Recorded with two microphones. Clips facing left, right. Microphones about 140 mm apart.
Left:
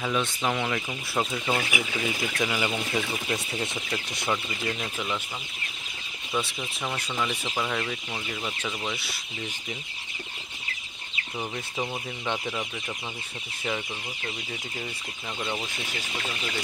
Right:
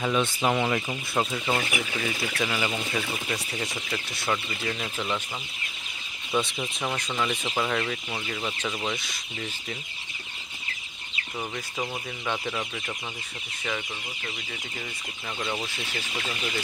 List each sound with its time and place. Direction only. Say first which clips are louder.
0.0 s speech: right 2 dB; 5° right (ahead or behind)
1.5 s speech: even; centre (ahead or behind); by 4.3 s 20° left (ahead or behind)
4.3 s speech: even; 10° left (ahead or behind)
6.4 s speech: right 2 dB; 5° right (ahead or behind)
12.3 s speech: even; 15° left (ahead or behind)